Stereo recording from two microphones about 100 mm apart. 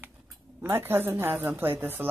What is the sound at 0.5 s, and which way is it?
A woman's voice, 25° right (ahead or behind).